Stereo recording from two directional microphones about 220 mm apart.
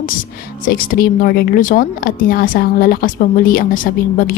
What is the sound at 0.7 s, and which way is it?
A woman's voice, 40° left (ahead or behind).